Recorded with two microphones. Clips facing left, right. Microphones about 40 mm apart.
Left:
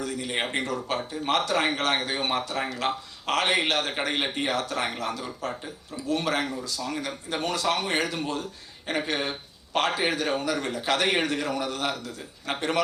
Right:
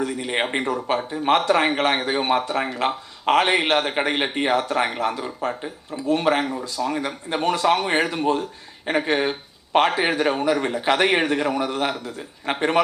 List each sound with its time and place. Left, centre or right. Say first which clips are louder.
0.0 s speech: right 5 dB; right